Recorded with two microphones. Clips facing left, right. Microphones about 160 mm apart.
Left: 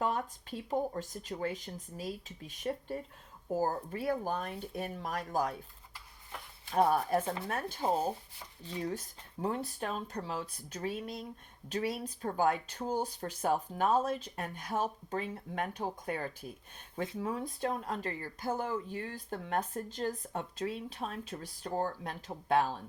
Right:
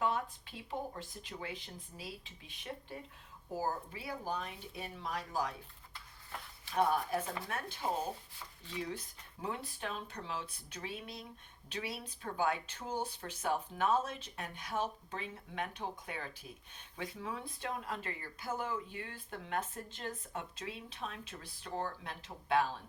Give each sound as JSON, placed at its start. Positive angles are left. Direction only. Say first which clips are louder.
{"t": 0.0, "sound": "speech", "louder": "left 2 dB", "side_deg": 45}
{"t": 6.7, "sound": "speech", "louder": "left 4 dB", "side_deg": 45}
{"t": 7.2, "sound": "speech", "louder": "left 5 dB", "side_deg": 30}